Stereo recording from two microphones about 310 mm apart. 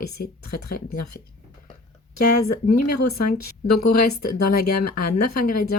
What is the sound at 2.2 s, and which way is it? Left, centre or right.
Speech, left.